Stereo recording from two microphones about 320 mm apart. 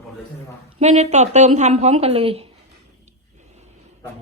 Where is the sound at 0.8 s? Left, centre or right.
Right.